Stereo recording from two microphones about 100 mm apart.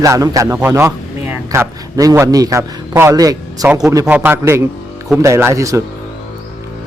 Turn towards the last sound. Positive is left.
turn(degrees=-30)  # may be behind; listen again after turning